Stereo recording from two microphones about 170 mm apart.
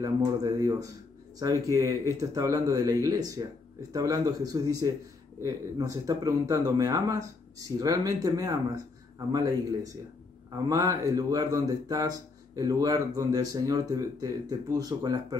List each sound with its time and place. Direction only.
0.0 s speech: 20° right (ahead or behind)